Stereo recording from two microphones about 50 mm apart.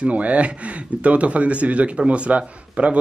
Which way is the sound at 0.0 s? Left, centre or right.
Right.